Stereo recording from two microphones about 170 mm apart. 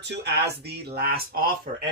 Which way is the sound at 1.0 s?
65° right (ahead or behind).